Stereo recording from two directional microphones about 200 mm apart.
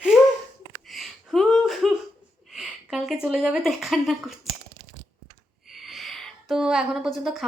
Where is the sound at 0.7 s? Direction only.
Centre (ahead or behind).